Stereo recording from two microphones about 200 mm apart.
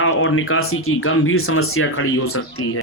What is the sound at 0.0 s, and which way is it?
Speech, 85° left.